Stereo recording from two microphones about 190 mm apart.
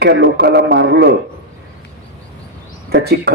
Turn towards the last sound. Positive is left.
turn(degrees=-60)  # may be behind; listen again after turning